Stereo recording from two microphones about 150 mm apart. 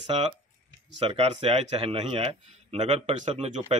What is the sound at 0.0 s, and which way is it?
Speech, 35° right (ahead or behind).